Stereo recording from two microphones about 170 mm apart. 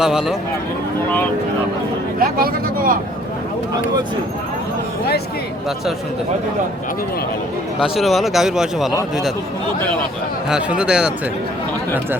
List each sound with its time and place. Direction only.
0.0 s speech: 5° right (ahead or behind)
2.1 s speech: 60° right (ahead or behind)
7.8 s speech: centre (ahead or behind)
10.5 s speech: 5° right (ahead or behind)